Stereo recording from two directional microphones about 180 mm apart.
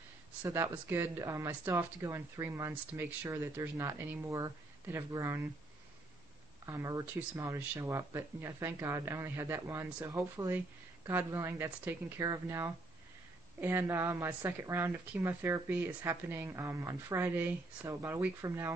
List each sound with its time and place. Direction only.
0.4 s speech: 15° right (ahead or behind)
6.6 s speech: 15° right (ahead or behind)